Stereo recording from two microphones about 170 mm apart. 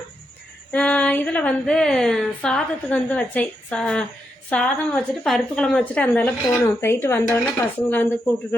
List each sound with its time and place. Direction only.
0.7 s a woman's voice: 10° left (ahead or behind)